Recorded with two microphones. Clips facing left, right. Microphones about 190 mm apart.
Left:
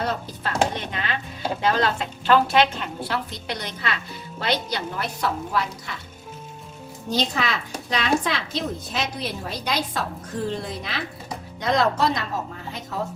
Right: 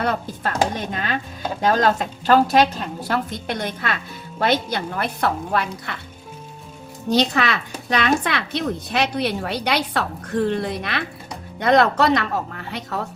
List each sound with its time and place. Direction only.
0.0 s a woman's voice: 55° right (ahead or behind)
0.7 s a woman's voice: 45° right (ahead or behind); by 6.0 s 60° right (ahead or behind)
7.1 s a woman's voice: 65° right (ahead or behind)